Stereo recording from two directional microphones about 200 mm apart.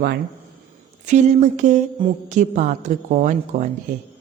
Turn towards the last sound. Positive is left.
turn(degrees=-40)  # may be behind; listen again after turning